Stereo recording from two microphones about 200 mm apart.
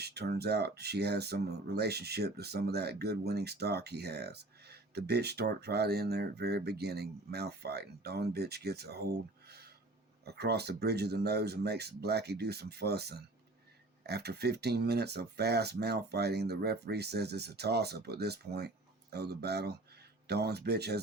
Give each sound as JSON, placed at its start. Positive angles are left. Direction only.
{"t": 0.0, "sound": "speech", "side_deg": -55}